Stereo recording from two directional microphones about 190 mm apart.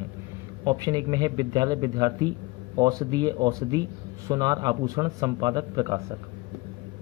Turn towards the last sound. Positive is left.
turn(degrees=-20)  # may be behind; listen again after turning